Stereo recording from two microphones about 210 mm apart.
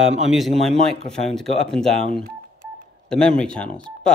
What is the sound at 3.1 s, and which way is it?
Speech, 5° left (ahead or behind).